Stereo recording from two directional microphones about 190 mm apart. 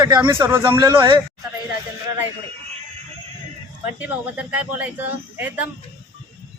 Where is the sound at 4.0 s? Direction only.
10° right (ahead or behind).